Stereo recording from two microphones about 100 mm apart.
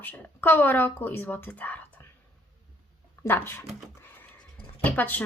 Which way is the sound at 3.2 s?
20° left (ahead or behind).